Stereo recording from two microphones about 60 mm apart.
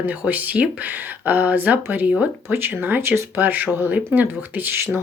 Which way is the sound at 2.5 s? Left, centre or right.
Right.